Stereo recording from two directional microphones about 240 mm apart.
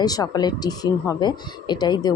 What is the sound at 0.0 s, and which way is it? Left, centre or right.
Speech, centre.